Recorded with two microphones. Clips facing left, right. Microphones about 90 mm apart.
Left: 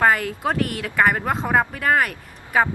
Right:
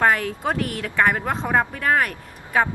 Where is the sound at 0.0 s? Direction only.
Centre (ahead or behind).